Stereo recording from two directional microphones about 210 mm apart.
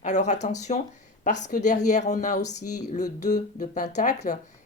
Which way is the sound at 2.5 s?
90° left.